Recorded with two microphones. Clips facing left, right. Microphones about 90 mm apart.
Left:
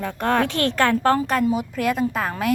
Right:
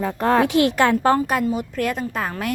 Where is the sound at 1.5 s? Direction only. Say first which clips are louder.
Left 1 dB; centre (ahead or behind).